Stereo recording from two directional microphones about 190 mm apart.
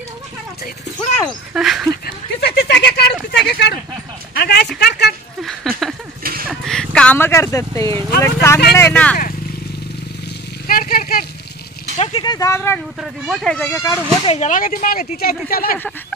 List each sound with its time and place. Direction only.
1.5 s speech: centre (ahead or behind)
2.0 s a sound: 60° left (ahead or behind)
4.4 s speech: 55° left (ahead or behind)
5.4 s a sound: centre (ahead or behind)
6.5 s speech: 5° left (ahead or behind)
10.7 s a sound: 50° left (ahead or behind)
12.0 s speech: 25° left (ahead or behind)
13.0 s speech: centre (ahead or behind)
13.7 s speech: 15° left (ahead or behind)
14.2 s speech: 35° left (ahead or behind)